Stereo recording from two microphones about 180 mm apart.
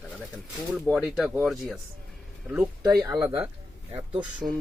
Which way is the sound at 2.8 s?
20° right (ahead or behind).